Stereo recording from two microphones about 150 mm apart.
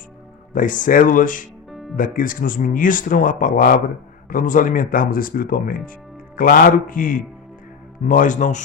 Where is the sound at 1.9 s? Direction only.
65° left (ahead or behind).